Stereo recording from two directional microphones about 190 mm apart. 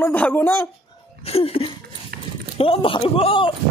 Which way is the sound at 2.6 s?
30° left (ahead or behind).